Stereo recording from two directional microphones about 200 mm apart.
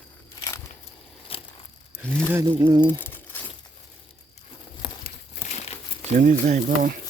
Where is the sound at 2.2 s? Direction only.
10° right (ahead or behind).